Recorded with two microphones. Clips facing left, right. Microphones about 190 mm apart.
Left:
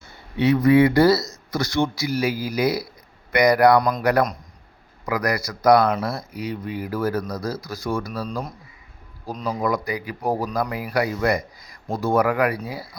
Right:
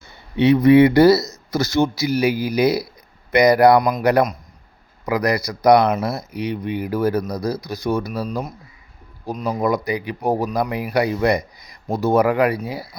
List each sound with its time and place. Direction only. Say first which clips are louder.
0.3 s speech: right 4 dB; 20° right (ahead or behind)
3.8 s a man's voice: right 2 dB; 10° right (ahead or behind)
4.0 s speech: right 3 dB; 20° right (ahead or behind)
8.2 s speech: right 3 dB; 5° right (ahead or behind)
9.6 s speech: right 4 dB; 20° right (ahead or behind)